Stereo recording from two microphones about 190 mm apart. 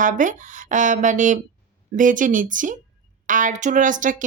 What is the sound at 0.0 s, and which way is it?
Speech, 40° right (ahead or behind).